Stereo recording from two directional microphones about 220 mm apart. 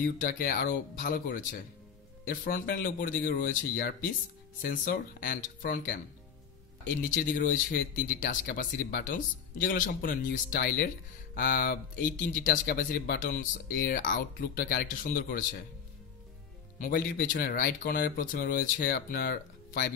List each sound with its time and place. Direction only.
0.0 s speech: 35° left (ahead or behind)
16.8 s speech: 40° left (ahead or behind)